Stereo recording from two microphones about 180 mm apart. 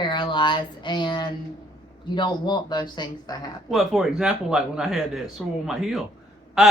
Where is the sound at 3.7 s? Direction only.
Centre (ahead or behind).